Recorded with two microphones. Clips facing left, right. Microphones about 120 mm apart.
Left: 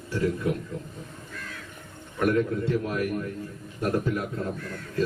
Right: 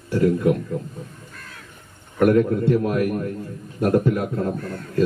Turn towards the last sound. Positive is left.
turn(degrees=-40)  # may be behind; listen again after turning